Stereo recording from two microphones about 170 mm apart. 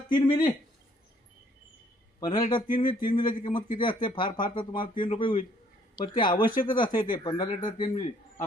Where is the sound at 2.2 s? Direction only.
25° left (ahead or behind).